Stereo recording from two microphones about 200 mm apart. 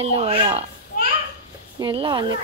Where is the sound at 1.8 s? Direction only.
25° right (ahead or behind).